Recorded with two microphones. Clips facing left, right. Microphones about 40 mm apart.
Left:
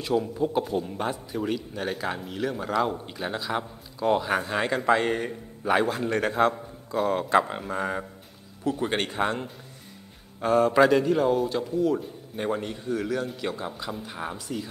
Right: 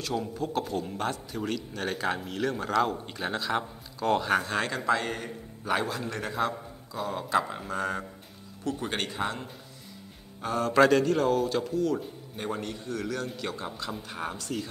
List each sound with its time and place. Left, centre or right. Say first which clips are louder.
0.3 s speech: left 5 dB; centre
1.9 s speech: right 1 dB; centre
4.6 s a man's voice: left 5 dB; left
7.7 s speech: left 1 dB; centre
8.9 s a man's voice: left 5 dB; left
10.7 s speech: left 2 dB; centre
11.7 s a man's voice: left 3 dB; centre
13.6 s speech: left 2 dB; centre